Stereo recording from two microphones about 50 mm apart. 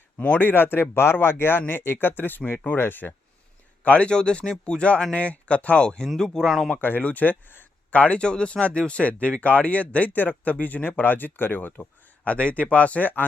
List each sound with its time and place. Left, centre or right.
0.3 s speech: left
3.8 s speech: left; by 6.7 s centre
6.7 s speech: left
7.9 s speech: left